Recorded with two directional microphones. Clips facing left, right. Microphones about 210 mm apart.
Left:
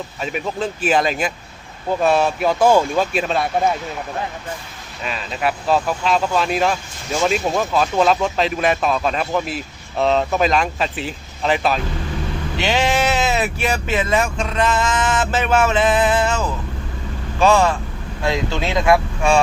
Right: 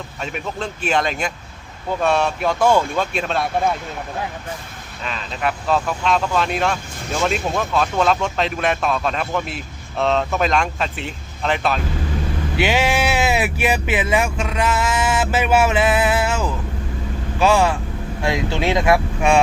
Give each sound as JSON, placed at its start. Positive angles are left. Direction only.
{"t": 0.2, "sound": "speech", "side_deg": 5}
{"t": 5.0, "sound": "speech", "side_deg": 5}
{"t": 12.5, "sound": "speech", "side_deg": -10}
{"t": 17.4, "sound": "speech", "side_deg": -10}